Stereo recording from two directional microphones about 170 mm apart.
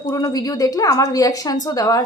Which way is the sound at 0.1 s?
20° left (ahead or behind).